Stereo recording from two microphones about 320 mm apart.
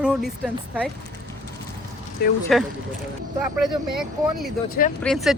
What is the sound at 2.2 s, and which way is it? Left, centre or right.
Speech, left.